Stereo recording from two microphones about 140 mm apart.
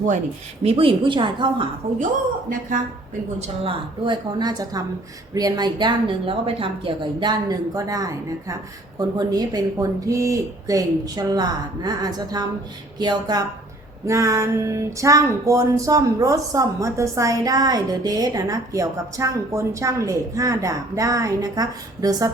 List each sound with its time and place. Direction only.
0.6 s a woman's voice: 45° right (ahead or behind)
1.8 s a woman's voice: 50° right (ahead or behind)
2.5 s speech: 70° right (ahead or behind)
3.4 s a woman's voice: 40° right (ahead or behind)
5.3 s a sound: 25° right (ahead or behind)